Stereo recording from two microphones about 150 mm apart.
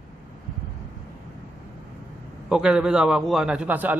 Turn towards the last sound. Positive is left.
turn(degrees=-10)  # may be behind; listen again after turning